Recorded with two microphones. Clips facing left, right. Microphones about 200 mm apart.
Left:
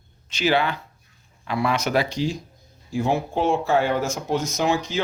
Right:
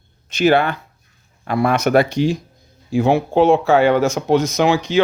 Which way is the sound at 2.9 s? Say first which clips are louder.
Right 8 dB; 75° right (ahead or behind).